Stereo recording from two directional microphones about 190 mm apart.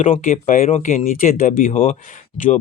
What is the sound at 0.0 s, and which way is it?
Speech, 40° left (ahead or behind).